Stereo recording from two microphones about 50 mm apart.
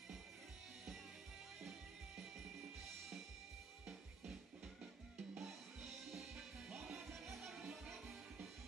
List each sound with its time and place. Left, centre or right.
5.4 s music: centre